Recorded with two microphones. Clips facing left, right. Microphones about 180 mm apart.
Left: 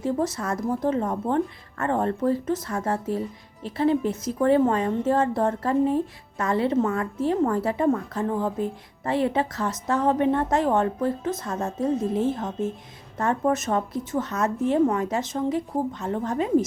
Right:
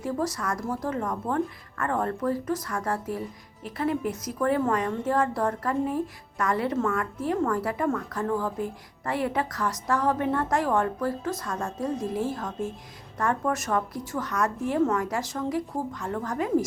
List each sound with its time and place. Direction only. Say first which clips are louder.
0.0 s speech: left 3 dB; 25° left (ahead or behind)